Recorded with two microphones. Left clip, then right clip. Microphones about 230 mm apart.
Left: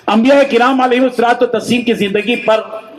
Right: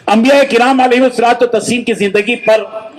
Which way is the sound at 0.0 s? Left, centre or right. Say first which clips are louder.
Right 1 dB; right.